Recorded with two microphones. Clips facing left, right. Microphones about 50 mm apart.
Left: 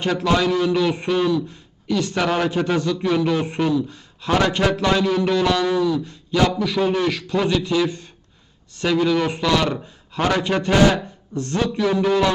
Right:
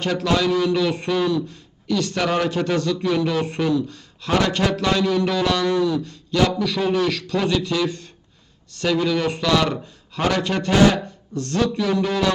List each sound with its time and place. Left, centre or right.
0.0 s a man's voice: centre